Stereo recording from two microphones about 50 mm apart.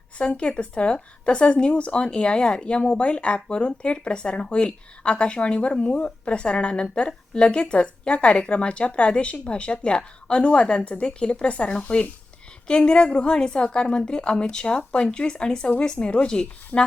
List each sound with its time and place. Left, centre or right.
0.2 s speech: left